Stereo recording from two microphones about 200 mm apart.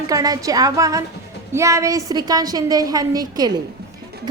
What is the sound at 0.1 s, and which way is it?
A woman's voice, 15° right (ahead or behind).